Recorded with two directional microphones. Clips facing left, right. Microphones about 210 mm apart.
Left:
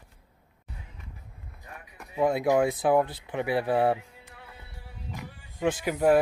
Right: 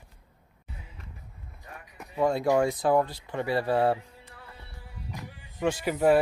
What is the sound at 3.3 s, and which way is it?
Speech, 15° left (ahead or behind).